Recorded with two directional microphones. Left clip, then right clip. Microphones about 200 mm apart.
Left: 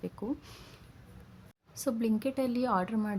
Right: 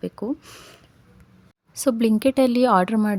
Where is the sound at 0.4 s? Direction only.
20° right (ahead or behind).